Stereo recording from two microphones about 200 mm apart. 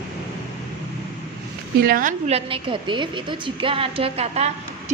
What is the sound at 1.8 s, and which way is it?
Speech, 50° right (ahead or behind).